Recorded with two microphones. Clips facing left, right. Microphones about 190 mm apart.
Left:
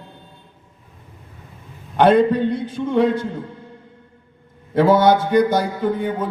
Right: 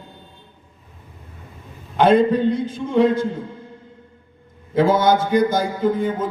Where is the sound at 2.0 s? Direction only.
65° left (ahead or behind).